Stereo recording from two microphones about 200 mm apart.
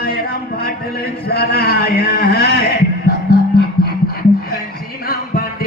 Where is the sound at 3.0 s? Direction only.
50° left (ahead or behind).